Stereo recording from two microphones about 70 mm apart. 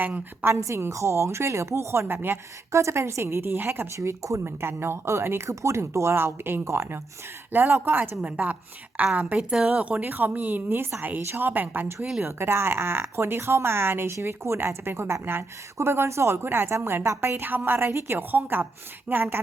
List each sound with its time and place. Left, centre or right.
0.0 s speech: right
0.5 s speech: right
3.9 s speech: right
7.5 s speech: right